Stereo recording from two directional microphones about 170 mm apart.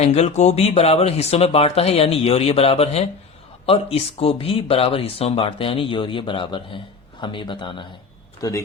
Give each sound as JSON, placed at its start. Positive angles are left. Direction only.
{"t": 0.0, "sound": "speech", "side_deg": 40}